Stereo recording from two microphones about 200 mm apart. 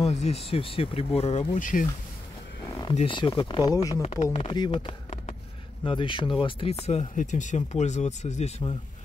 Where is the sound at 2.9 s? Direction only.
30° left (ahead or behind).